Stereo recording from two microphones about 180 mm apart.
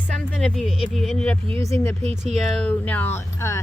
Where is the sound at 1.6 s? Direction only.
15° left (ahead or behind).